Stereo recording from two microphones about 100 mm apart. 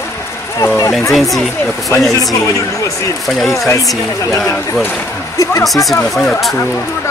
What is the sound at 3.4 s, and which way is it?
Speech, centre (ahead or behind).